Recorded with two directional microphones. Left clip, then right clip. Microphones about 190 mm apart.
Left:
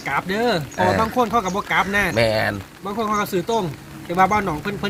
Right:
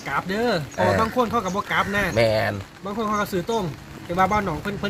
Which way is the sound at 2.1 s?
15° right (ahead or behind).